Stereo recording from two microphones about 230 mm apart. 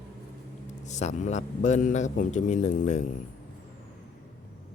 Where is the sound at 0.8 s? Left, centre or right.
Left.